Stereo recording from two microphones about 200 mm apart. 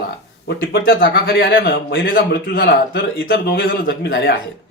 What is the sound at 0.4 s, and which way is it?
A man's voice, 50° left (ahead or behind).